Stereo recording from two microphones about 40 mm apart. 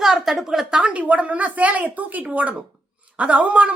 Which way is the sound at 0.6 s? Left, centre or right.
Right.